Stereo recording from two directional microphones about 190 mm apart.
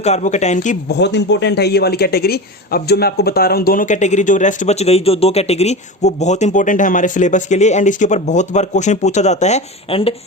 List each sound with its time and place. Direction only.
0.0 s speech: 35° left (ahead or behind)
0.9 s speech: 60° left (ahead or behind); by 10.2 s 30° left (ahead or behind)